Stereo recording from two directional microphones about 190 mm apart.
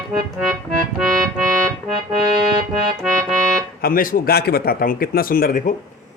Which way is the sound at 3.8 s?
45° left (ahead or behind).